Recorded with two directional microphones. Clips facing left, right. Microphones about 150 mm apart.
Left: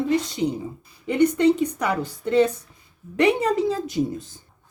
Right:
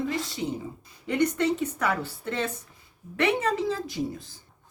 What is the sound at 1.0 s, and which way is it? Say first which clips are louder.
A woman's voice: left 6 dB; 10° left (ahead or behind).